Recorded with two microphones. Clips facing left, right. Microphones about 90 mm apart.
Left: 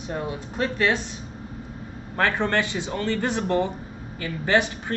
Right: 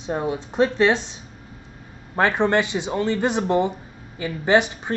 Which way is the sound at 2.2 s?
20° right (ahead or behind).